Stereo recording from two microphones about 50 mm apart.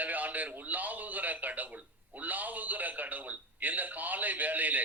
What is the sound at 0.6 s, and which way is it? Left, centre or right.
A man's voice, right.